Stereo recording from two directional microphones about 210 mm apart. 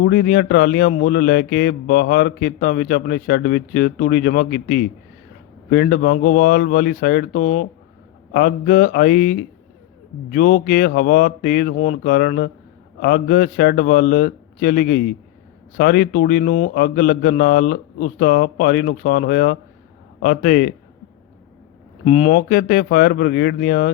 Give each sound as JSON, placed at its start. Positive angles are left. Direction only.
{"t": 0.0, "sound": "speech", "side_deg": 45}
{"t": 22.0, "sound": "speech", "side_deg": 30}